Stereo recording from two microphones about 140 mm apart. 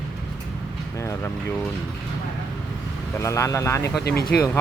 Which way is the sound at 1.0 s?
20° left (ahead or behind).